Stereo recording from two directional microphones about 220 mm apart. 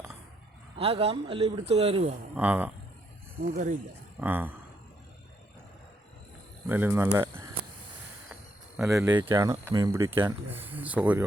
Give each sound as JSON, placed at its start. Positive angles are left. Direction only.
{"t": 0.8, "sound": "a man's voice", "side_deg": -25}
{"t": 2.3, "sound": "speech", "side_deg": -5}
{"t": 3.4, "sound": "speech", "side_deg": -40}
{"t": 4.2, "sound": "speech", "side_deg": -10}
{"t": 6.7, "sound": "speech", "side_deg": -10}
{"t": 8.9, "sound": "speech", "side_deg": -15}